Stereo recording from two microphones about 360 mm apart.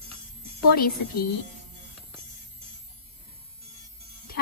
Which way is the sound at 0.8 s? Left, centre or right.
Left.